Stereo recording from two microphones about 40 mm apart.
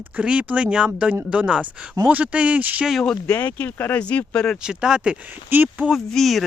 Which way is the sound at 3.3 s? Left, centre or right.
Left.